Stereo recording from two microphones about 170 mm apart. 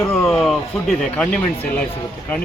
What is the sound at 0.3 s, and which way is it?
Speech, centre (ahead or behind).